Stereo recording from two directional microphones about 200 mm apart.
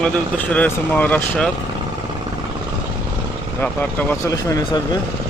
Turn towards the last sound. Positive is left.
turn(degrees=15)  # may be behind; listen again after turning